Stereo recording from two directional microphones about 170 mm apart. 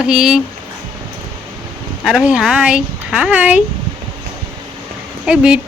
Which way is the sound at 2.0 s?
5° right (ahead or behind).